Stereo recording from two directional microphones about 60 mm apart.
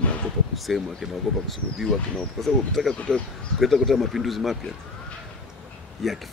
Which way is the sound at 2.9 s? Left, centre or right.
Centre.